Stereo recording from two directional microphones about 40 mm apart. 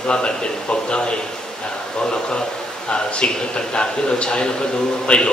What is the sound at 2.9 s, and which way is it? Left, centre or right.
A man's voice, left.